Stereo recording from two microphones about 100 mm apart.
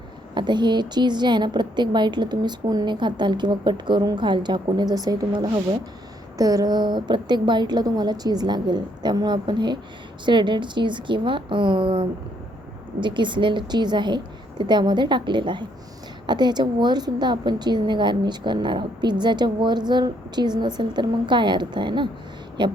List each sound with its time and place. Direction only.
0.3 s a woman's voice: 50° right (ahead or behind)